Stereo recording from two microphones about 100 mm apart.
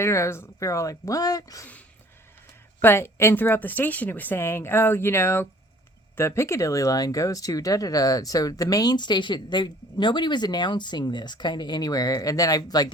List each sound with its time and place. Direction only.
0.0 s speech: 30° left (ahead or behind)
2.8 s a woman's voice: 25° left (ahead or behind)